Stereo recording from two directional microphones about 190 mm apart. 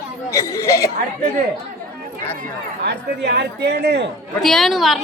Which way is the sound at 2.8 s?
65° right (ahead or behind).